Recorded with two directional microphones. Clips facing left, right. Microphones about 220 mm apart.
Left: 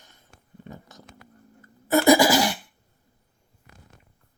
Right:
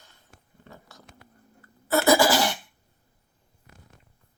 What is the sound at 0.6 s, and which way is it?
Speech, 20° left (ahead or behind).